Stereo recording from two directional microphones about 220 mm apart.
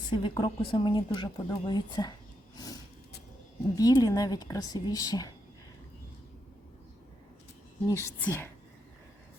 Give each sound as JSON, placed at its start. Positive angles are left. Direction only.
{"t": 0.1, "sound": "speech", "side_deg": 20}
{"t": 2.6, "sound": "a sound", "side_deg": 15}
{"t": 3.8, "sound": "a woman's voice", "side_deg": 15}
{"t": 7.9, "sound": "a woman's voice", "side_deg": 15}